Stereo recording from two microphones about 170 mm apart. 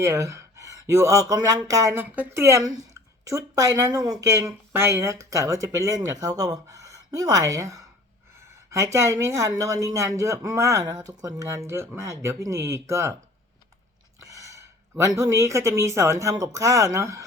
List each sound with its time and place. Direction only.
0.0 s speech: 20° right (ahead or behind)
14.2 s a sound: 20° right (ahead or behind)
15.2 s speech: 20° right (ahead or behind)